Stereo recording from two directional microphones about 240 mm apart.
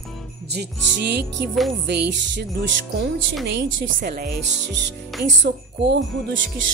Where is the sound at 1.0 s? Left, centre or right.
Right.